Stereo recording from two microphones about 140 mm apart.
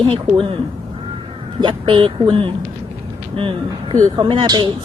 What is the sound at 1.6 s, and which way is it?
Speech, 35° right (ahead or behind).